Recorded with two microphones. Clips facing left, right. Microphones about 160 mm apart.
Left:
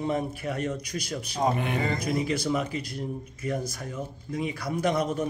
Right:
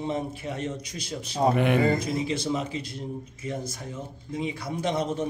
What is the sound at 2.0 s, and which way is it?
Speech, 25° right (ahead or behind).